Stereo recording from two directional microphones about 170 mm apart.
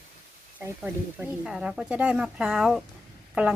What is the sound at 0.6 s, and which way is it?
A woman's voice, 10° right (ahead or behind).